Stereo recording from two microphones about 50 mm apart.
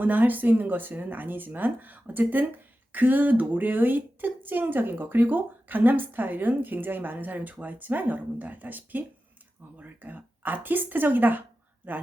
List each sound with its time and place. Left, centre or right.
0.0 s speech: right